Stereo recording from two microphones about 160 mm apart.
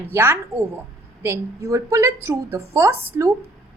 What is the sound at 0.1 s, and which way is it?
A woman's voice, 15° right (ahead or behind).